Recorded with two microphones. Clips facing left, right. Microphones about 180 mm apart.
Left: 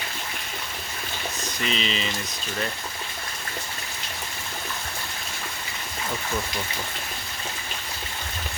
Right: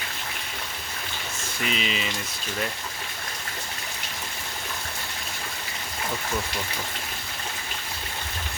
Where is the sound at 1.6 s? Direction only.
10° right (ahead or behind).